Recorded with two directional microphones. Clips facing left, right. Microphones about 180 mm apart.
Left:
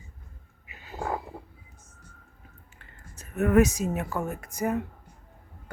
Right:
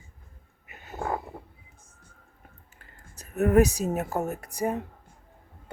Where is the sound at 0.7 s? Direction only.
50° right (ahead or behind).